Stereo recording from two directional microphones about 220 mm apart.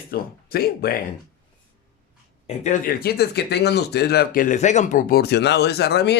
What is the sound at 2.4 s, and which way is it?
Speech, 35° left (ahead or behind).